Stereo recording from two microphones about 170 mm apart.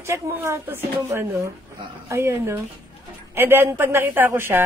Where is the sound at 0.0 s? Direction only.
15° right (ahead or behind).